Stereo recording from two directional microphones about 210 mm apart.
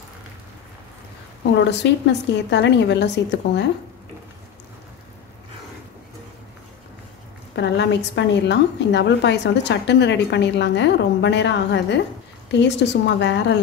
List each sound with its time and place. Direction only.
1.4 s a woman's voice: 55° left (ahead or behind)
7.5 s a woman's voice: 55° left (ahead or behind)